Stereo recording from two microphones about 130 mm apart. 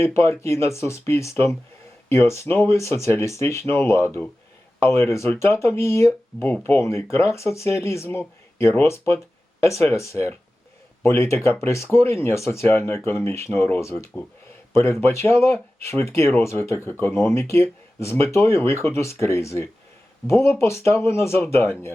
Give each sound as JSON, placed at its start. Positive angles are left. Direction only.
{"t": 0.2, "sound": "speech", "side_deg": 20}
{"t": 15.0, "sound": "speech", "side_deg": 20}